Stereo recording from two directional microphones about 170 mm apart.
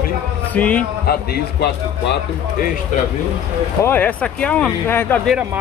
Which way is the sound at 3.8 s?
10° left (ahead or behind).